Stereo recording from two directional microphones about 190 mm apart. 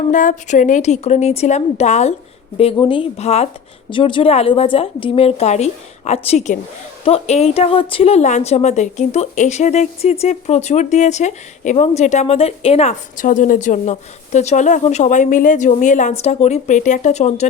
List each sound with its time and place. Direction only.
0.1 s a woman's voice: 40° left (ahead or behind)
2.7 s a woman's voice: 25° left (ahead or behind)